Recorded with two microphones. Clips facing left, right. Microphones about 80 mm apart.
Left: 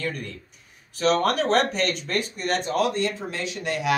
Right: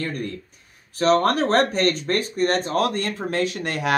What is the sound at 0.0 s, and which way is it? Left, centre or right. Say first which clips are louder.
Speech: right 3 dB; right.